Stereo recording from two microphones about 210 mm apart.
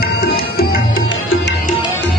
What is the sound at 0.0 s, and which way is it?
Music, 45° left (ahead or behind).